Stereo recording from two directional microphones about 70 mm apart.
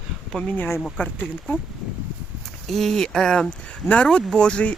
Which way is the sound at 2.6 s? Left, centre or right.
Centre.